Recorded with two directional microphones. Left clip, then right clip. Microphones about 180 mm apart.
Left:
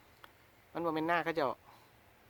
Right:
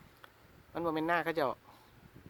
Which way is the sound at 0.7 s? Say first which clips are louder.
Right 1 dB; 5° right (ahead or behind).